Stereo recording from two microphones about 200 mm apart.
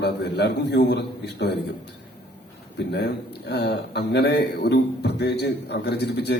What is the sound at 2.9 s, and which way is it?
A man's voice, 55° left (ahead or behind).